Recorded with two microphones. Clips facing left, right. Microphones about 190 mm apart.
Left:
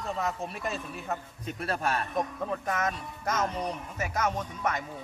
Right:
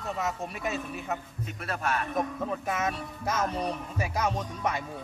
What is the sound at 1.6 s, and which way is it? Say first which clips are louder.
Speech: left 1 dB; 35° left (ahead or behind).